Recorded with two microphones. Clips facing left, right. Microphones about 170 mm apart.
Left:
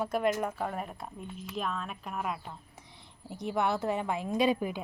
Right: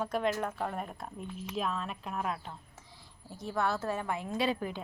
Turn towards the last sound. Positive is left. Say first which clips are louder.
# left 4 dB
turn(degrees=15)  # may be behind; listen again after turning